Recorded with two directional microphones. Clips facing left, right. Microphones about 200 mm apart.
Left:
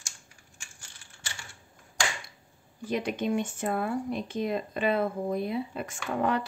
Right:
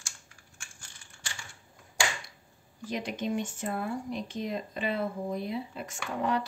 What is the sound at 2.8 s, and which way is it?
Speech, 55° left (ahead or behind).